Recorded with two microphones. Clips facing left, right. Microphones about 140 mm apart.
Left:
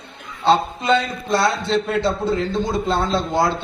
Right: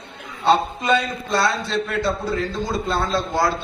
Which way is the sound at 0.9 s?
25° left (ahead or behind).